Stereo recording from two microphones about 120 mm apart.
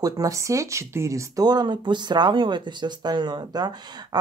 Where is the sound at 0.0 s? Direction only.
25° right (ahead or behind).